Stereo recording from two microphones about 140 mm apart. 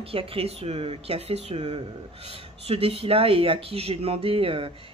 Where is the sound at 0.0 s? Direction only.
40° right (ahead or behind).